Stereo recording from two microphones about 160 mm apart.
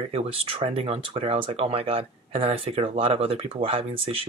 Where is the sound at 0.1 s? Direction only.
35° right (ahead or behind).